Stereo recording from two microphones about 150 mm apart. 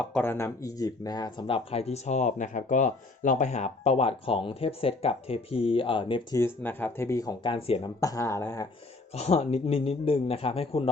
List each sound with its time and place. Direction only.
0.0 s speech: 10° left (ahead or behind); by 6.2 s 35° left (ahead or behind)
6.3 s speech: 15° left (ahead or behind)
9.1 s speech: 45° left (ahead or behind)